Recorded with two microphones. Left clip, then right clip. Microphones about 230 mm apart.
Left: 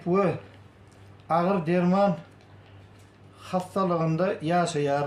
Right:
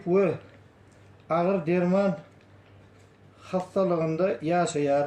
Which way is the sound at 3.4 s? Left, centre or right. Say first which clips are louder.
Right 1 dB; left.